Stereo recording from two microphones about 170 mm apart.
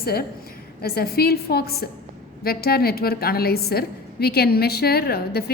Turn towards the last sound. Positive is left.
turn(degrees=65)  # may be behind; listen again after turning